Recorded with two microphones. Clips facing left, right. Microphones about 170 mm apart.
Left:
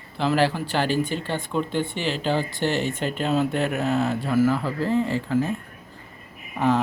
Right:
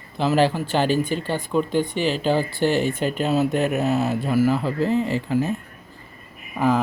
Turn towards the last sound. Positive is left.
turn(degrees=-5)  # may be behind; listen again after turning